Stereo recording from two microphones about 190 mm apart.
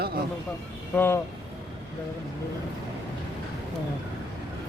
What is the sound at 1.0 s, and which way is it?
Speech, 15° left (ahead or behind).